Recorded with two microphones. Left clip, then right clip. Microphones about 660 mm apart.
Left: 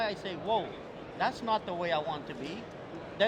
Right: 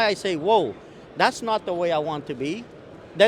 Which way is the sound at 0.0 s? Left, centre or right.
Right.